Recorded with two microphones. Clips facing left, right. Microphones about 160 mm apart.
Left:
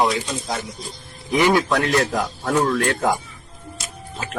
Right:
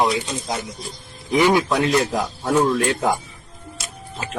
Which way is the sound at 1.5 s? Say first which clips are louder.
Even; 20° right (ahead or behind).